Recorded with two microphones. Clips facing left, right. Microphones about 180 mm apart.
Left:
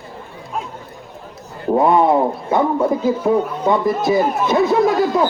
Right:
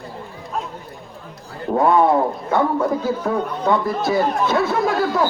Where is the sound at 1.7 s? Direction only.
20° left (ahead or behind).